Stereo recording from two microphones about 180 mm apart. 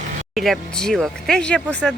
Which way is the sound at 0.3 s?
Centre (ahead or behind).